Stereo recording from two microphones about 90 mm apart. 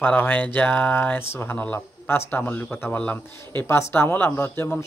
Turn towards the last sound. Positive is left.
turn(degrees=25)  # may be behind; listen again after turning